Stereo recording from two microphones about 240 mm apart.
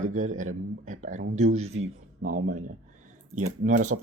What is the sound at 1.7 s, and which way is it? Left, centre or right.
Speech, right.